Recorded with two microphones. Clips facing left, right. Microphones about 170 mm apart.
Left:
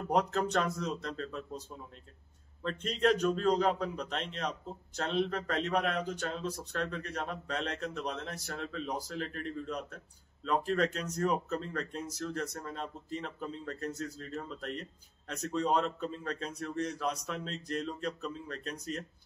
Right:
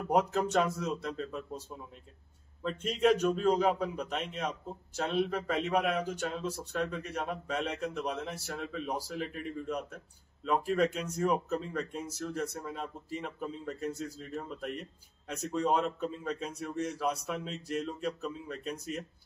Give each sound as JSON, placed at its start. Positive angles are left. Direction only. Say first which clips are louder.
{"t": 0.1, "sound": "speech", "louder": "right 2 dB", "side_deg": -10}
{"t": 2.6, "sound": "speech", "louder": "right 2 dB", "side_deg": -5}